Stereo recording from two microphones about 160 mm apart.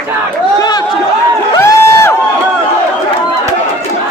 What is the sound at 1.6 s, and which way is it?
Crowd, 15° left (ahead or behind).